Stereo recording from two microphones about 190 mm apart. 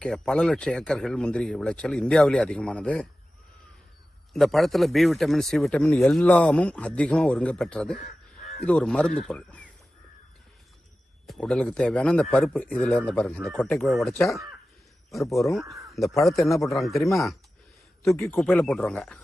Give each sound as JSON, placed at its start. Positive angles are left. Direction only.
{"t": 0.0, "sound": "a man's voice", "side_deg": 5}
{"t": 4.4, "sound": "a man's voice", "side_deg": 0}
{"t": 7.9, "sound": "crow", "side_deg": 40}
{"t": 8.6, "sound": "a man's voice", "side_deg": 5}
{"t": 11.3, "sound": "a man's voice", "side_deg": 5}
{"t": 18.0, "sound": "a man's voice", "side_deg": 15}
{"t": 18.3, "sound": "a man's voice", "side_deg": 5}